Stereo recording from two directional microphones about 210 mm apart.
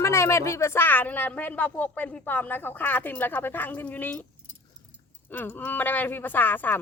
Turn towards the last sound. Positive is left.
turn(degrees=10)  # may be behind; listen again after turning